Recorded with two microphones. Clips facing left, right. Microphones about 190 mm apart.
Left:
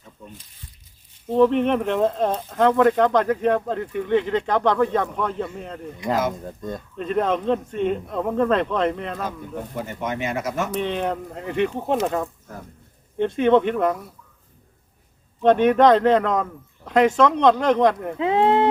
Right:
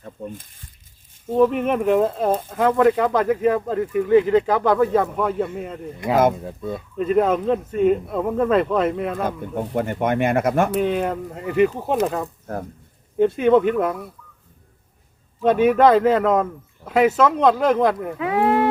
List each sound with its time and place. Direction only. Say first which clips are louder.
0.0 s speech: right 10 dB; 50° right (ahead or behind)
1.3 s speech: even; 5° right (ahead or behind)
9.2 s speech: right 5 dB; 55° right (ahead or behind)
10.8 s speech: right 3 dB; 5° right (ahead or behind)
15.4 s speech: even; 5° right (ahead or behind)
18.2 s speech: left 1 dB; 25° left (ahead or behind)